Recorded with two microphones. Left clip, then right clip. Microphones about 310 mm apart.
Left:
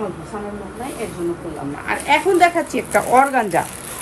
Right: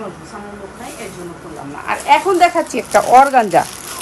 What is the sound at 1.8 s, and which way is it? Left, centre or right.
Speech, centre.